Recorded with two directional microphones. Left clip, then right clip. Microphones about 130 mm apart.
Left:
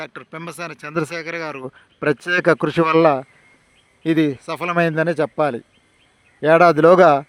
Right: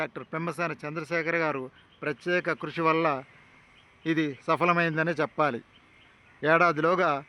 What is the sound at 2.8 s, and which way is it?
Speech, 90° left.